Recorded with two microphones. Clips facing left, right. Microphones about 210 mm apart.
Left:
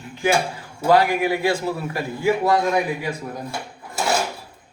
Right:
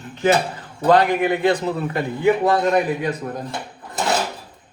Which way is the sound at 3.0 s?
10° left (ahead or behind).